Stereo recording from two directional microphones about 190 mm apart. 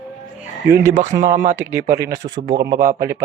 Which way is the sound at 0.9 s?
40° right (ahead or behind).